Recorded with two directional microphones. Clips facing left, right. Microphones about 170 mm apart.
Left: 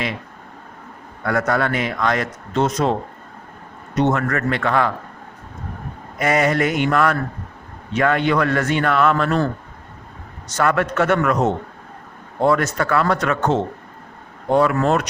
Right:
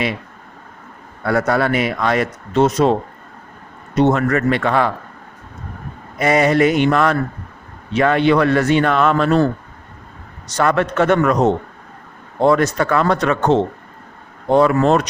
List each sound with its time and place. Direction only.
1.2 s a man's voice: 30° right (ahead or behind)
1.6 s speech: 15° right (ahead or behind)
4.1 s a man's voice: 20° right (ahead or behind)
6.1 s speech: 30° right (ahead or behind)
6.4 s a man's voice: 15° right (ahead or behind)
10.6 s a man's voice: 30° right (ahead or behind)
12.4 s a man's voice: 20° right (ahead or behind)